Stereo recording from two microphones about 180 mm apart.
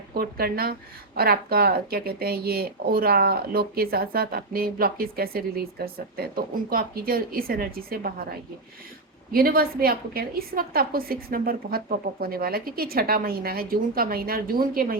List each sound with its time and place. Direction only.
0.1 s speech: 55° right (ahead or behind)
9.3 s speech: 55° right (ahead or behind)